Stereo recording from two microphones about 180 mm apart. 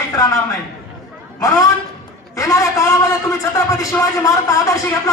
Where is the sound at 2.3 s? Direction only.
20° left (ahead or behind).